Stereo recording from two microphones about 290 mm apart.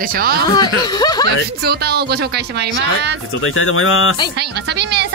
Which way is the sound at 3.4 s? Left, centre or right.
Left.